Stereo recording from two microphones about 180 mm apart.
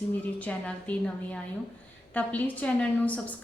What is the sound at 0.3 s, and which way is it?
A woman's voice, 5° left (ahead or behind).